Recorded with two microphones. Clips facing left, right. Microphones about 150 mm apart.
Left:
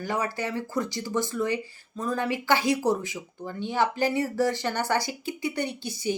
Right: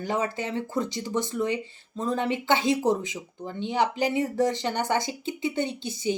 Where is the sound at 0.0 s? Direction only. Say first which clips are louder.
Right 1 dB; 20° right (ahead or behind).